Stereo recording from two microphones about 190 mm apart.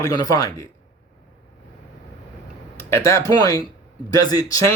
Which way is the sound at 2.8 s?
15° left (ahead or behind).